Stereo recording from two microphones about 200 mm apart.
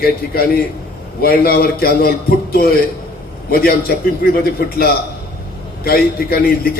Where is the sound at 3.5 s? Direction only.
50° left (ahead or behind).